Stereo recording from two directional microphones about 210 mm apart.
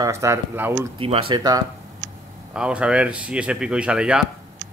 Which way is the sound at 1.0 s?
25° right (ahead or behind).